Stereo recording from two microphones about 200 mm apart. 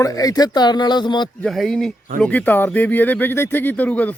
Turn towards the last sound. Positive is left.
turn(degrees=5)  # may be behind; listen again after turning